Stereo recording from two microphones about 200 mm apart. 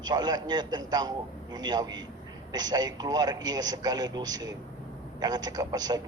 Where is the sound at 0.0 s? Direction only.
20° right (ahead or behind).